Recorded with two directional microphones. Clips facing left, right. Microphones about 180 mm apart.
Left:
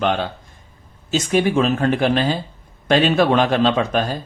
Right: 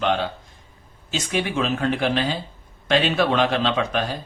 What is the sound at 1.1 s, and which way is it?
Speech, 45° left (ahead or behind).